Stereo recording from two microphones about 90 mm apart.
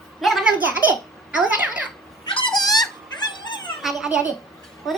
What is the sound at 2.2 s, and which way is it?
Dog, 60° left (ahead or behind).